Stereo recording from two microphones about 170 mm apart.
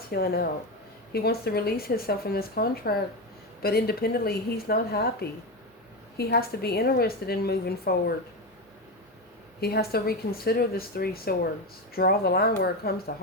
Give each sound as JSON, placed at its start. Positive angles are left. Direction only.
{"t": 0.1, "sound": "a woman's voice", "side_deg": 65}
{"t": 9.6, "sound": "speech", "side_deg": 65}